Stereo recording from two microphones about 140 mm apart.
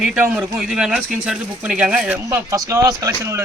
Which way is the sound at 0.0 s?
5° right (ahead or behind).